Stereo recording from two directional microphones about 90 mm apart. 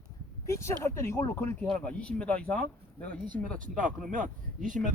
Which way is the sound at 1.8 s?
10° left (ahead or behind).